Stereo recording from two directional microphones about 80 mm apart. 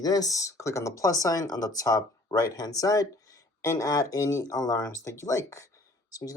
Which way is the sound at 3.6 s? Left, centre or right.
Left.